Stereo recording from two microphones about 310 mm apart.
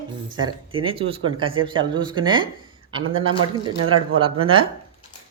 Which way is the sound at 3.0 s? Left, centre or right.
Right.